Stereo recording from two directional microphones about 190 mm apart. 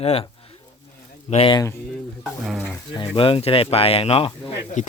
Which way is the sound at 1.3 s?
30° left (ahead or behind).